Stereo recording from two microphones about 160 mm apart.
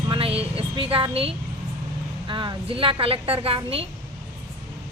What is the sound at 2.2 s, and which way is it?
A woman's voice, 30° right (ahead or behind).